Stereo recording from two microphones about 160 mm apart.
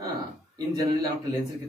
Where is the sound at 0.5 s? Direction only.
25° right (ahead or behind).